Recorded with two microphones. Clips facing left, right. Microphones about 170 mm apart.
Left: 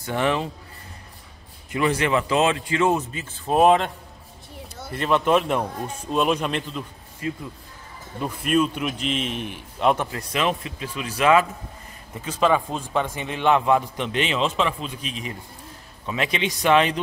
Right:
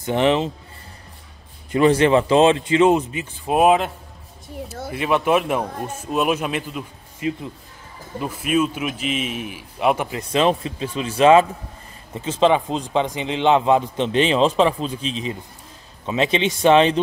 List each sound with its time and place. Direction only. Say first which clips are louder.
0.0 s a man's voice: right 5 dB; 20° right (ahead or behind)
1.7 s a man's voice: right 7 dB; 30° right (ahead or behind); by 3.9 s 5° right (ahead or behind)
4.9 s speech: right 1 dB; 10° right (ahead or behind)
7.2 s speech: right 5 dB; 20° right (ahead or behind)
8.2 s a man's voice: right 1 dB; 5° right (ahead or behind)
10.1 s a man's voice: right 6 dB; 30° right (ahead or behind)